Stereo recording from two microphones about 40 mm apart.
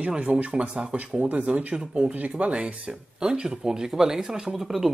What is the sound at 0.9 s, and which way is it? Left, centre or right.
Speech, right.